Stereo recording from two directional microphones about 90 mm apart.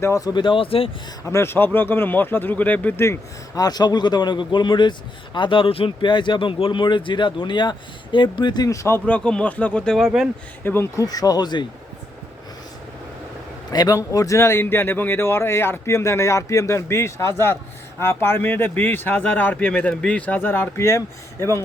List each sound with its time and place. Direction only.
0.0 s speech: 35° left (ahead or behind)
0.3 s speech: 65° left (ahead or behind); by 0.9 s 85° left
1.2 s a man's voice: 30° left (ahead or behind)
3.5 s a man's voice: 45° left (ahead or behind); by 8.6 s 60° left (ahead or behind)
8.6 s speech: 35° left (ahead or behind)
9.0 s a man's voice: 15° left (ahead or behind)
10.9 s speech: 45° left (ahead or behind)
13.7 s a man's voice: 40° left (ahead or behind)